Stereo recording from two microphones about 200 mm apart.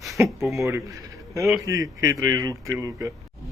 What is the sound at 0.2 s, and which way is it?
Speech, 10° right (ahead or behind).